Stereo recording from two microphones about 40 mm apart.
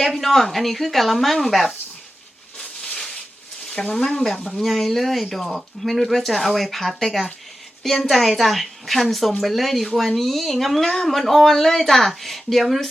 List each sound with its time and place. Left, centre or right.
0.1 s speech: centre
2.6 s a sound: centre
3.8 s speech: centre
4.6 s speech: centre